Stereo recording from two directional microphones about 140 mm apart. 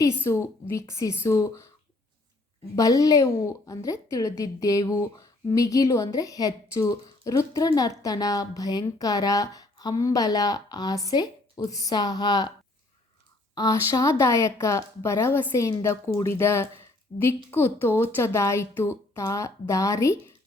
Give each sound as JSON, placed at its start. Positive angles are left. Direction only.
{"t": 0.3, "sound": "a woman's voice", "side_deg": 20}
{"t": 2.7, "sound": "a woman's voice", "side_deg": 25}
{"t": 13.6, "sound": "a woman's voice", "side_deg": 25}